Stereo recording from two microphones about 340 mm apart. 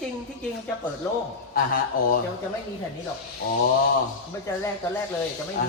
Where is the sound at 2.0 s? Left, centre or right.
Left.